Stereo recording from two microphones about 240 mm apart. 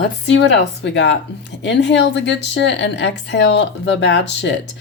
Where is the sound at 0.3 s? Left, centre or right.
Left.